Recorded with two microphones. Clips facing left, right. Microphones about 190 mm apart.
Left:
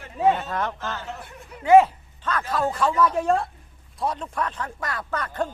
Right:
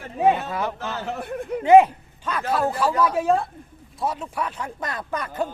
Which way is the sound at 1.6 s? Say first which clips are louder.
Right 1 dB; 15° right (ahead or behind).